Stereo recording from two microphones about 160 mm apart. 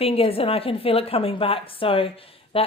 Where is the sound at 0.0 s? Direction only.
35° left (ahead or behind).